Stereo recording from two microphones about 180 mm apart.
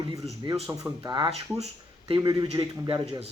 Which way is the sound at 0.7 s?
15° right (ahead or behind).